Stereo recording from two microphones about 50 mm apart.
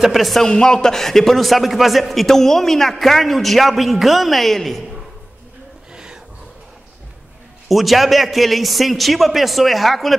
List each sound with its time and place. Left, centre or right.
0.0 s a man's voice: centre
0.5 s a man's voice: centre
5.9 s a sound: centre
7.6 s a man's voice: centre